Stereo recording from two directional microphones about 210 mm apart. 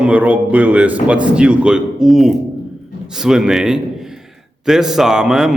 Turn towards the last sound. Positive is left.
turn(degrees=-5)  # may be behind; listen again after turning